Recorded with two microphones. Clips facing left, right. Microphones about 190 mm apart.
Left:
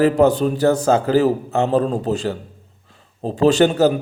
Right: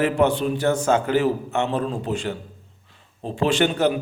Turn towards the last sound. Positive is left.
turn(degrees=40)  # may be behind; listen again after turning